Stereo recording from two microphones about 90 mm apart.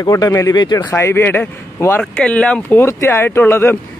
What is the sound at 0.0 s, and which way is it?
Speech, 45° left (ahead or behind).